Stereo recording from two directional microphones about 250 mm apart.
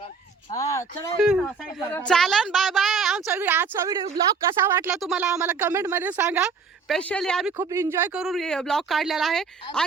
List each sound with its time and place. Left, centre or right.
0.5 s a sound: centre
1.2 s a woman's voice: centre
7.5 s a woman's voice: centre